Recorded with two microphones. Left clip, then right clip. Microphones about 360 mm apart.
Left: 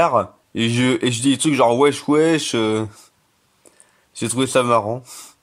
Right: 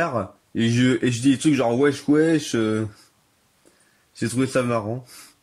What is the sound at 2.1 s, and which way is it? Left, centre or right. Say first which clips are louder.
Speech: even; left.